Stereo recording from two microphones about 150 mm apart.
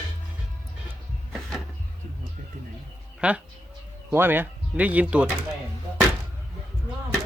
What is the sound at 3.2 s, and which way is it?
A man's voice, 10° right (ahead or behind).